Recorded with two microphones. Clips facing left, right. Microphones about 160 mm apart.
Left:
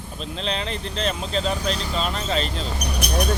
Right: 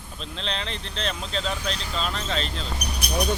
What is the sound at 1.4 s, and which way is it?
Speech, 40° left (ahead or behind).